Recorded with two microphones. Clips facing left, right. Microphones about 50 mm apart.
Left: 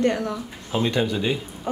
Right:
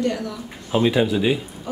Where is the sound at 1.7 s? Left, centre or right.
Left.